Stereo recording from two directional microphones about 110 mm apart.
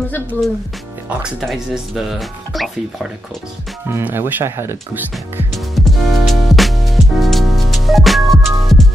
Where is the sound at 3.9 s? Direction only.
20° right (ahead or behind).